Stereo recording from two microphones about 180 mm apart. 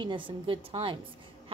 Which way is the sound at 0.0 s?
25° right (ahead or behind).